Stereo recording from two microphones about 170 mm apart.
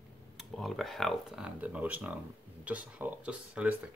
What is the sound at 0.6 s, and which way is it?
Speech, centre (ahead or behind).